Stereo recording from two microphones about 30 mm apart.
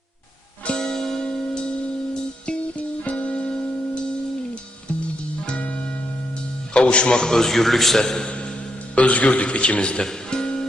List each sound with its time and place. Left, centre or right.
0.8 s music: centre
1.2 s music: left
2.5 s music: left
3.3 s music: left
5.5 s music: left
6.7 s a man's voice: left
7.2 s a man's voice: centre
7.9 s a man's voice: centre
8.3 s music: left
9.0 s a man's voice: left
10.0 s music: left